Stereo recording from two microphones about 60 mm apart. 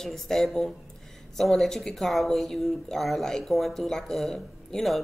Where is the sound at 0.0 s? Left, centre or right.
Centre.